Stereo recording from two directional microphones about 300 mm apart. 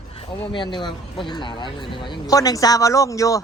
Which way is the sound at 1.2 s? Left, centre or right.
Centre.